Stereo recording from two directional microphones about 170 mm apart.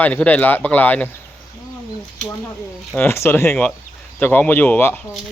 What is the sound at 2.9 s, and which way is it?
Speech, 10° left (ahead or behind).